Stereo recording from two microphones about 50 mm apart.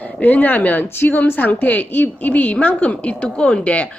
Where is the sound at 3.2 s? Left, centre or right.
Centre.